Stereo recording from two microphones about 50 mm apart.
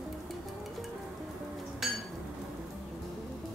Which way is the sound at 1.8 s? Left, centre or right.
Centre.